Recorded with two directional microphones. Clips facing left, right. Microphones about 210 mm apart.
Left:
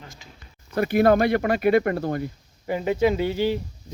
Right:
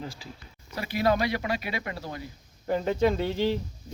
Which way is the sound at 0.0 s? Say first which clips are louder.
Right 7 dB; 30° right (ahead or behind).